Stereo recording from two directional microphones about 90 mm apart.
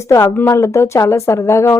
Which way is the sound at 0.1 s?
30° left (ahead or behind).